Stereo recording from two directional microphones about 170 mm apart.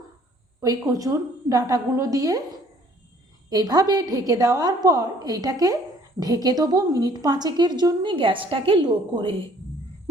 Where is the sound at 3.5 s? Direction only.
20° right (ahead or behind).